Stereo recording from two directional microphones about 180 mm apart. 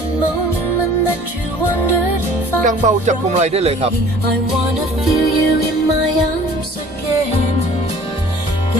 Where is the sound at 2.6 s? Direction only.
45° right (ahead or behind).